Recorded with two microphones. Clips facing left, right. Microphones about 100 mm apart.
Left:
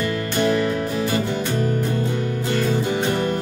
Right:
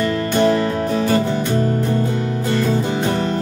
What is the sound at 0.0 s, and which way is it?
Music, 35° right (ahead or behind).